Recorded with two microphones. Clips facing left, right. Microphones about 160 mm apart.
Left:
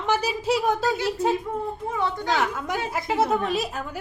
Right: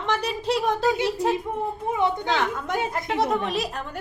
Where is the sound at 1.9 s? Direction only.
20° right (ahead or behind).